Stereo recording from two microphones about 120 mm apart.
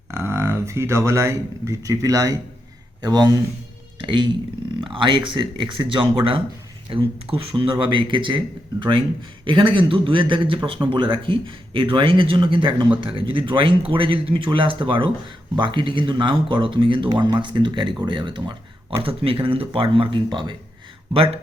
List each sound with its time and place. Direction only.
0.1 s speech: 20° right (ahead or behind); by 20.6 s 40° right (ahead or behind)